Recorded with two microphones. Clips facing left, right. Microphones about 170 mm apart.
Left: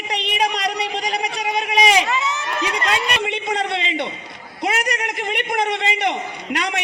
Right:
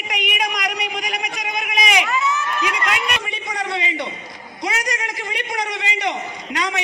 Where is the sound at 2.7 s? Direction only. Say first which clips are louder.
Left 2 dB; 30° left (ahead or behind).